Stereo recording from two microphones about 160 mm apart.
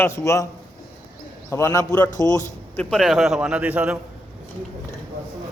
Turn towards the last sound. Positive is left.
turn(degrees=-10)  # may be behind; listen again after turning